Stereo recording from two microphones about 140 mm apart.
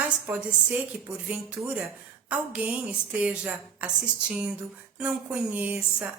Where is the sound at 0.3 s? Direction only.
10° right (ahead or behind).